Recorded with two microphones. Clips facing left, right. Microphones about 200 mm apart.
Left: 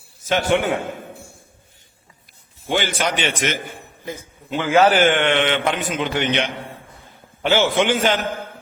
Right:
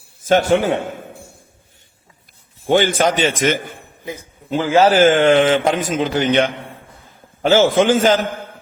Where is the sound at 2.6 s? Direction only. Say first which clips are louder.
Right 7 dB; 50° right (ahead or behind).